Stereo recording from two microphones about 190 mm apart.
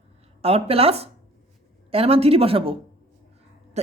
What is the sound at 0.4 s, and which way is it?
A woman's voice, 30° right (ahead or behind).